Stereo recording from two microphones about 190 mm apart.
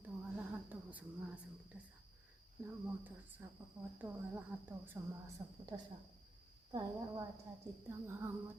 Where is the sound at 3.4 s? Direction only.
15° right (ahead or behind).